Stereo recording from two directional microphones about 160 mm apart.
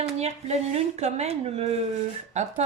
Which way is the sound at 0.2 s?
40° right (ahead or behind).